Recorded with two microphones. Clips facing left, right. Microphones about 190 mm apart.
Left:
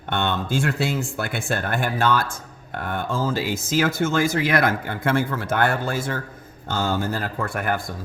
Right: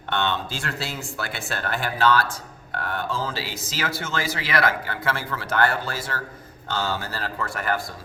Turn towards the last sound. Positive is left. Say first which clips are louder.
# left 2 dB
turn(degrees=55)  # may be behind; listen again after turning